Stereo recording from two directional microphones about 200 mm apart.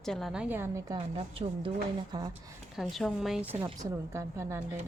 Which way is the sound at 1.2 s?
30° right (ahead or behind).